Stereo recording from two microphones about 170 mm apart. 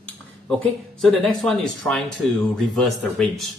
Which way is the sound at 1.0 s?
5° left (ahead or behind).